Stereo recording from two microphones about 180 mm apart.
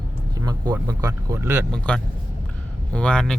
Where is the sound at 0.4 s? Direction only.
20° right (ahead or behind).